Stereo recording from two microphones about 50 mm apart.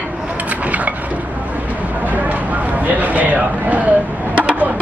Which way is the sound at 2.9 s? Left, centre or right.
Right.